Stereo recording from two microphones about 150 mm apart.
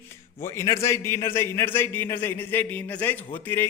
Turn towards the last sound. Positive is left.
turn(degrees=15)  # may be behind; listen again after turning